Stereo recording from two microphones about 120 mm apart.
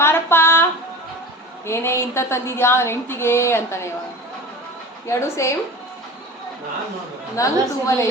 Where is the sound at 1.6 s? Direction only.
20° left (ahead or behind).